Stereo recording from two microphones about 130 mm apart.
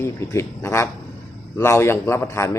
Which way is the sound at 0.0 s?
20° left (ahead or behind).